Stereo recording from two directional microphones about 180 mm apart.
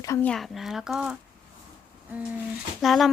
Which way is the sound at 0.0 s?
15° left (ahead or behind).